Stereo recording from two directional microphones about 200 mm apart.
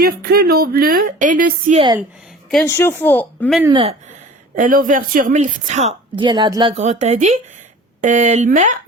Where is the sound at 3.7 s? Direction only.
30° right (ahead or behind).